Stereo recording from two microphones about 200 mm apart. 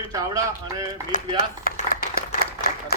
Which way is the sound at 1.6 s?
50° left (ahead or behind).